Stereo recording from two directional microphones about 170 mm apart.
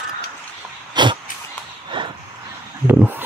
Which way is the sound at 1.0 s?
25° right (ahead or behind).